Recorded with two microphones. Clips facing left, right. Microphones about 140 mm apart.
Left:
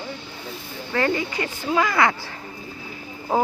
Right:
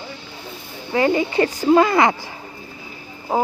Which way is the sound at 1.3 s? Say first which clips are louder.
Right 9 dB; 35° right (ahead or behind).